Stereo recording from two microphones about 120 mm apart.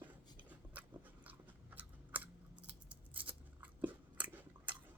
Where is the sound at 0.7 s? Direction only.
15° right (ahead or behind).